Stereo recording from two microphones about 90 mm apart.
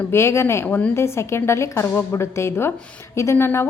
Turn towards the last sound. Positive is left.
turn(degrees=30)  # may be behind; listen again after turning